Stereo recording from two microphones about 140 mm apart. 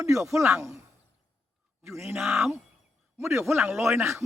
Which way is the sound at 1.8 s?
20° right (ahead or behind).